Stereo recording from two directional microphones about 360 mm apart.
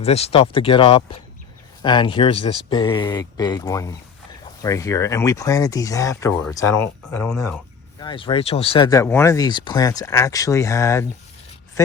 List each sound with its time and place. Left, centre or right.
0.0 s speech: centre